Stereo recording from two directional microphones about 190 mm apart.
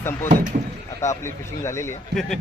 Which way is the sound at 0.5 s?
40° right (ahead or behind).